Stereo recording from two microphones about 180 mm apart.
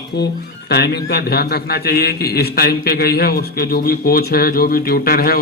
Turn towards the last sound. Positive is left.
turn(degrees=55)  # may be behind; listen again after turning